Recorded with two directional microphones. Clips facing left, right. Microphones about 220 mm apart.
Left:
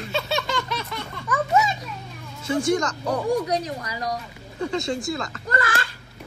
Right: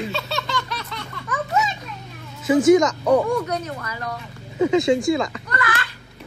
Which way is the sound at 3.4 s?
35° left (ahead or behind).